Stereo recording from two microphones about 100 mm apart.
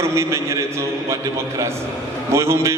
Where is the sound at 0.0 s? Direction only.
25° right (ahead or behind).